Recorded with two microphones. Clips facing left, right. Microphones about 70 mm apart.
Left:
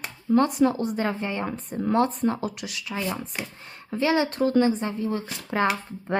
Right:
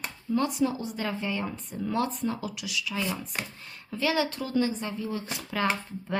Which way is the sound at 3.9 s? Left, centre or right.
Left.